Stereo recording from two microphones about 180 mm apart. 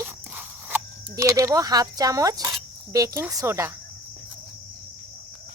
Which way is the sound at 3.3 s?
20° right (ahead or behind).